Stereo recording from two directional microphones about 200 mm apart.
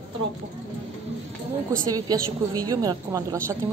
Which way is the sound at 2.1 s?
20° right (ahead or behind).